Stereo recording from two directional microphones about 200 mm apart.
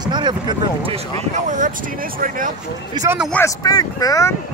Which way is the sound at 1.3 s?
40° right (ahead or behind).